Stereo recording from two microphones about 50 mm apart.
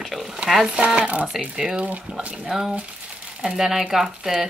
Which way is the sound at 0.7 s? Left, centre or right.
Right.